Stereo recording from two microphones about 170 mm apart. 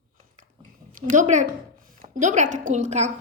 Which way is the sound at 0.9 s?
50° right (ahead or behind).